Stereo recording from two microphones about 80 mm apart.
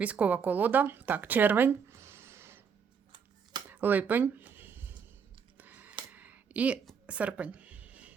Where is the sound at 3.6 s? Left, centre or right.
Right.